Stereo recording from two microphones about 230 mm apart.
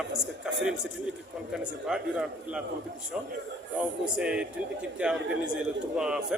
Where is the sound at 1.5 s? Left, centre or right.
Centre.